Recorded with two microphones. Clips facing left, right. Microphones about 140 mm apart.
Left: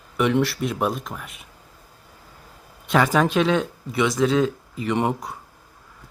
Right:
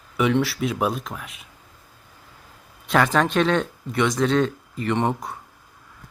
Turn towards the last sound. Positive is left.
turn(degrees=5)  # may be behind; listen again after turning